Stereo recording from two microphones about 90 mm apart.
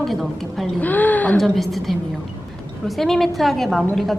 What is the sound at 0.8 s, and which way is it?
Speech, 20° left (ahead or behind).